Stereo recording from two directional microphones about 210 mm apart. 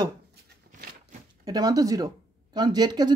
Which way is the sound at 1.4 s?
15° right (ahead or behind).